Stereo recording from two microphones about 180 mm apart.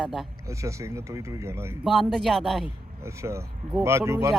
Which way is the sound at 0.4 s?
15° right (ahead or behind).